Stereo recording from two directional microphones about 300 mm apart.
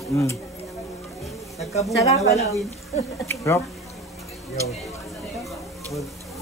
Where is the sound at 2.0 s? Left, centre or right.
Left.